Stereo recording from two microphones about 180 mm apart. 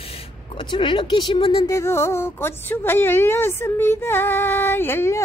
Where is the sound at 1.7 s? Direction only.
15° left (ahead or behind).